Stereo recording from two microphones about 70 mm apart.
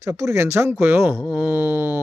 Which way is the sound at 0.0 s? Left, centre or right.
Right.